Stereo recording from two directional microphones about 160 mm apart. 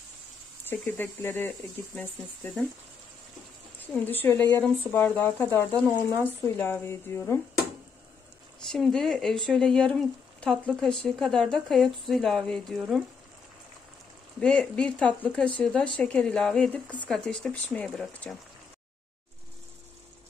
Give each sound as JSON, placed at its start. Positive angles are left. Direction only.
{"t": 0.7, "sound": "speech", "side_deg": 10}
{"t": 3.8, "sound": "speech", "side_deg": 10}
{"t": 8.6, "sound": "speech", "side_deg": 0}
{"t": 14.4, "sound": "speech", "side_deg": 5}